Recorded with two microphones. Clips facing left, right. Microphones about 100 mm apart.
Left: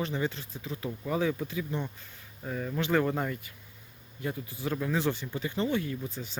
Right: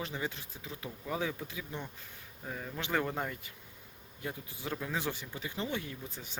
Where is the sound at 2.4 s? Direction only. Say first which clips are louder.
Left 7 dB; 5° right (ahead or behind).